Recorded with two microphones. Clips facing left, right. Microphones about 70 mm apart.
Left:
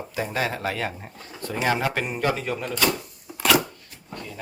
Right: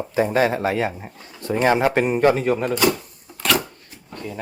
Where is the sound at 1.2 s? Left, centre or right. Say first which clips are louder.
Right 6 dB; right.